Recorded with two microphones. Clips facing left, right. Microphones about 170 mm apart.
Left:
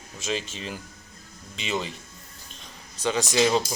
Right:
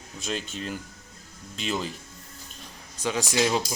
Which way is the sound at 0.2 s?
Centre (ahead or behind).